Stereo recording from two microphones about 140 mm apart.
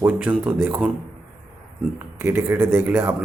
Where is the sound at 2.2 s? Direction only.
15° right (ahead or behind).